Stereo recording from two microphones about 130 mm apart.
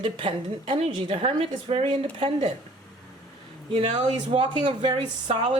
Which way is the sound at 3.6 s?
45° right (ahead or behind).